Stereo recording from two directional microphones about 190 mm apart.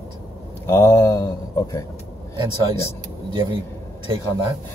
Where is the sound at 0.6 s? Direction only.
15° left (ahead or behind).